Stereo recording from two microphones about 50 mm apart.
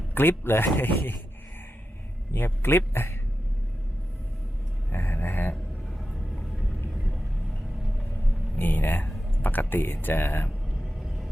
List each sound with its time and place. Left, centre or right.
0.1 s speech: left
2.3 s speech: left
4.9 s a sound: left
5.9 s vehicle: centre
8.5 s speech: left
10.8 s vehicle: centre